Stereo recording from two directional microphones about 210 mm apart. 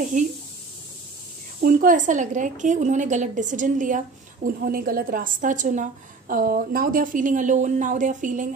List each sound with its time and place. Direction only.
1.6 s a woman's voice: 40° right (ahead or behind)